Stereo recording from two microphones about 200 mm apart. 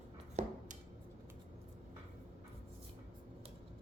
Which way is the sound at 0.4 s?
35° right (ahead or behind).